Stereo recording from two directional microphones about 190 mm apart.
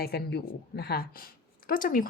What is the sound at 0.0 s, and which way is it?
A woman's voice, 60° left (ahead or behind).